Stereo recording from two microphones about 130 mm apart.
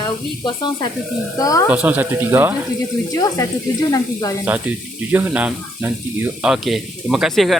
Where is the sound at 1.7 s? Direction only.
10° right (ahead or behind).